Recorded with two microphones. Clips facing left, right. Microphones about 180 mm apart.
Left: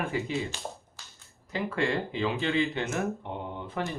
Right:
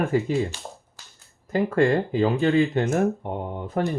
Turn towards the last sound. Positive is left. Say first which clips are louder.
# right 7 dB
turn(degrees=-45)  # may be behind; listen again after turning